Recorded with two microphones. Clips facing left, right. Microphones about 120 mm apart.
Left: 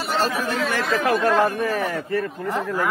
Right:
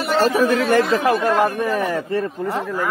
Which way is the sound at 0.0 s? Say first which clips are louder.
Right 6 dB; 55° right (ahead or behind).